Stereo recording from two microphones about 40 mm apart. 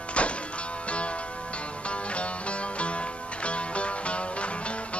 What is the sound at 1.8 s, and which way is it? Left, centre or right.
Music, left.